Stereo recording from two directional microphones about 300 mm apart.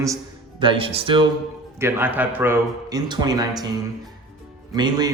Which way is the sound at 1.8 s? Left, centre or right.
Centre.